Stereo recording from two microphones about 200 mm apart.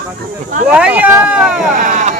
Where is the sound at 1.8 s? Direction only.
35° right (ahead or behind).